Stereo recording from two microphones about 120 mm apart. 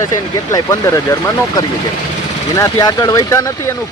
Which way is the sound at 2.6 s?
30° left (ahead or behind).